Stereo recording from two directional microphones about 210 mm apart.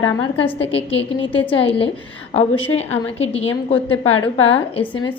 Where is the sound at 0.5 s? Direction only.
25° left (ahead or behind).